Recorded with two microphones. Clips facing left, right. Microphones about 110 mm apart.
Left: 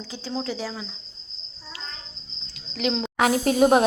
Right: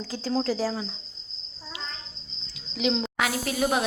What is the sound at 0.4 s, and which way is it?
Speech, 35° right (ahead or behind).